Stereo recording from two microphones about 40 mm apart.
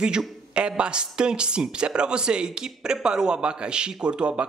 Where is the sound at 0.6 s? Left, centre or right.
Right.